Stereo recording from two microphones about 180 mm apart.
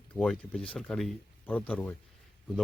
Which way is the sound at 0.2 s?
5° left (ahead or behind).